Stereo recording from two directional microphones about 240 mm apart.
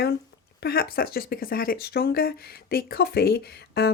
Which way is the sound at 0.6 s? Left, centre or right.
Left.